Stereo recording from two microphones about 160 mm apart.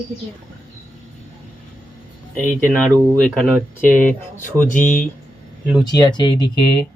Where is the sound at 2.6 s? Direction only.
5° left (ahead or behind).